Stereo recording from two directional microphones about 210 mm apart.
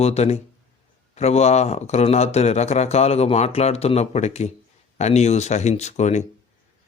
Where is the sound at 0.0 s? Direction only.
30° left (ahead or behind).